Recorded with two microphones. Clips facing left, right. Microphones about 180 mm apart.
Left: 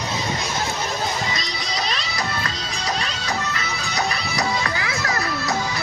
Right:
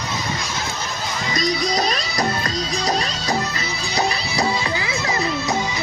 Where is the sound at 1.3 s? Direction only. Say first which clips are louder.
Right 8 dB; 45° right (ahead or behind); by 5.8 s 20° right (ahead or behind).